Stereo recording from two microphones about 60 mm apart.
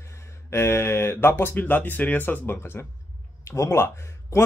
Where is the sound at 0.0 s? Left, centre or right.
Left.